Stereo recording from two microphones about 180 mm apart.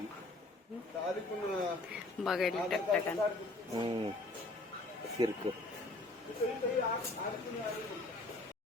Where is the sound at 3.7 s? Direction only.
25° right (ahead or behind).